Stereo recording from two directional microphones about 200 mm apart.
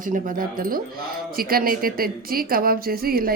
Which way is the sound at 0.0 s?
40° right (ahead or behind).